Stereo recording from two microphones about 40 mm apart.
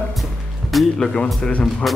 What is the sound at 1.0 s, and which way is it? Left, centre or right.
Speech, centre.